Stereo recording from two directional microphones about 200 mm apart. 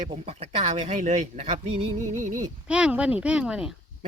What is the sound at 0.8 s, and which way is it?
Speech, 35° right (ahead or behind).